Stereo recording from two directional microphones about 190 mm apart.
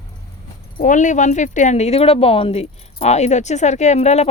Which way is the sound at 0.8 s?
40° left (ahead or behind).